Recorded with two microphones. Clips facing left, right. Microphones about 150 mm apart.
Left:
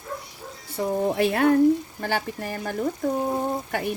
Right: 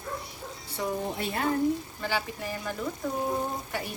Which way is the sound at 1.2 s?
70° left (ahead or behind).